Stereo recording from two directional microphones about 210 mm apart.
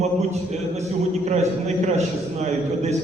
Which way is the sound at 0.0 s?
30° right (ahead or behind).